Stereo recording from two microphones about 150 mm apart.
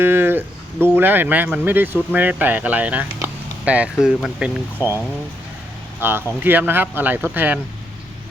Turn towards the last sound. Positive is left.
turn(degrees=-15)  # may be behind; listen again after turning